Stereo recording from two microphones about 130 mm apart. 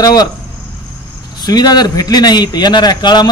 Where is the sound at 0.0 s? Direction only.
30° left (ahead or behind).